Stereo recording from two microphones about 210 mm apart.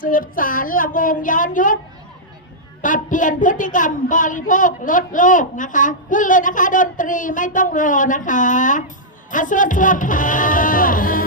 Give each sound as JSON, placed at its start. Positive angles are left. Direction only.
{"t": 0.0, "sound": "a woman's voice", "side_deg": 40}
{"t": 2.8, "sound": "a woman's voice", "side_deg": 40}